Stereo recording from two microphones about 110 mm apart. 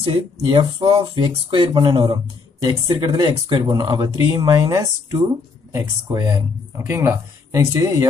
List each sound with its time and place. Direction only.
0.0 s speech: 50° right (ahead or behind); by 6.4 s 35° right (ahead or behind)
6.9 s speech: 25° right (ahead or behind)